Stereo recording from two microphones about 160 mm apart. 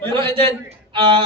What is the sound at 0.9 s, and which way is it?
Speech, 30° right (ahead or behind).